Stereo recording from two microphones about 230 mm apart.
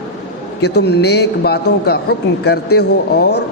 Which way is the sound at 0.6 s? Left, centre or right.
Left.